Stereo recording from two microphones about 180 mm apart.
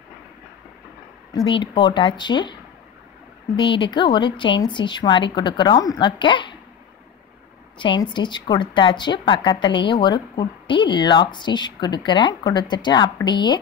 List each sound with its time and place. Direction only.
1.3 s a woman's voice: 25° left (ahead or behind)
3.5 s a woman's voice: 25° left (ahead or behind)
7.8 s a woman's voice: 25° left (ahead or behind)